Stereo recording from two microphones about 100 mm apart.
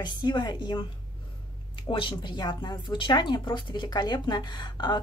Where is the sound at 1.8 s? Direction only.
55° left (ahead or behind).